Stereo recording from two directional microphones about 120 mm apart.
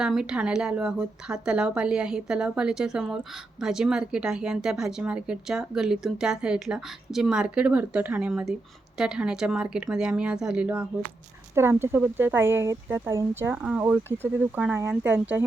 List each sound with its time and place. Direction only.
0.0 s speech: 5° right (ahead or behind)
11.5 s speech: 20° right (ahead or behind)
13.5 s speech: 10° right (ahead or behind)